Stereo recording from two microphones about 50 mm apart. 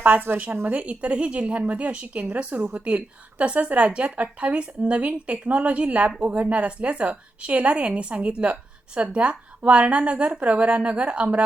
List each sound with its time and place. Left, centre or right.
0.0 s a woman's voice: right